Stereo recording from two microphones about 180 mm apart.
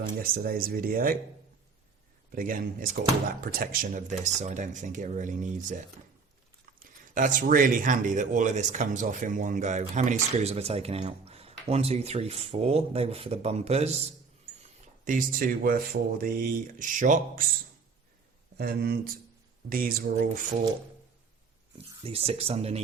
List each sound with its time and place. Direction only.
0.2 s speech: 55° right (ahead or behind)
2.3 s speech: 50° right (ahead or behind)
7.0 s speech: 45° right (ahead or behind)
14.6 s speech: 45° right (ahead or behind)
18.5 s speech: 60° right (ahead or behind)
22.0 s speech: 35° right (ahead or behind)